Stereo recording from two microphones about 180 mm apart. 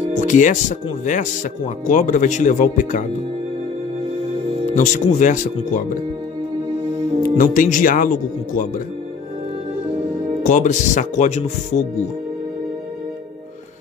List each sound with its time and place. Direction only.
0.1 s speech: 45° left (ahead or behind)
4.7 s speech: 45° left (ahead or behind)
7.2 s speech: 50° left (ahead or behind)
10.4 s speech: 45° left (ahead or behind)